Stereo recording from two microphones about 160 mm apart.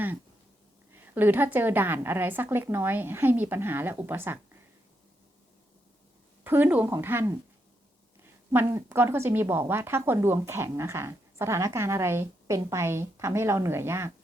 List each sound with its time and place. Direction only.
1.1 s a woman's voice: 10° right (ahead or behind)
6.4 s a woman's voice: 10° right (ahead or behind)
8.5 s a woman's voice: 15° right (ahead or behind)